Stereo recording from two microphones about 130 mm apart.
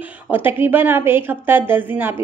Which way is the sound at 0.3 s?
15° right (ahead or behind).